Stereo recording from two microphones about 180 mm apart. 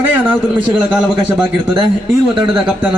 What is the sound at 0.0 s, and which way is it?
A man's voice, 10° right (ahead or behind).